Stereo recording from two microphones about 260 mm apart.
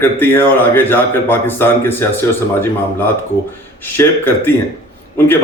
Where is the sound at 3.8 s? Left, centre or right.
Centre.